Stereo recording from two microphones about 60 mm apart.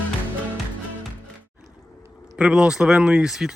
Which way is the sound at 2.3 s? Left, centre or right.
Centre.